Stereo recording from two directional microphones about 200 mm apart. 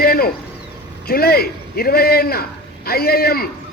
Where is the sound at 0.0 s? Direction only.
50° left (ahead or behind).